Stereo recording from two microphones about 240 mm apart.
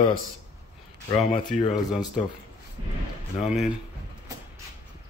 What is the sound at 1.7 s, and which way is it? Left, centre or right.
Speech, centre.